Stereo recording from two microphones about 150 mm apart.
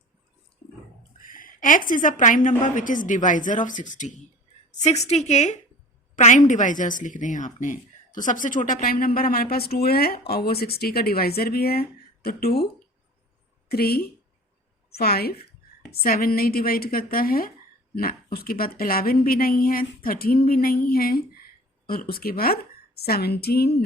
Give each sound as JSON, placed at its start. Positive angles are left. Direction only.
{"t": 1.2, "sound": "a woman's voice", "side_deg": 65}
{"t": 4.8, "sound": "a woman's voice", "side_deg": 45}
{"t": 13.7, "sound": "a woman's voice", "side_deg": 90}
{"t": 15.9, "sound": "a woman's voice", "side_deg": 75}